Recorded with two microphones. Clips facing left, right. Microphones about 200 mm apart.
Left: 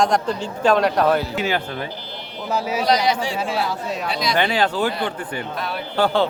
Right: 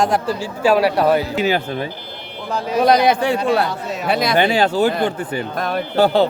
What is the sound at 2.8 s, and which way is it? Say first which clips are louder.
Speech: right 7 dB; 55° right (ahead or behind).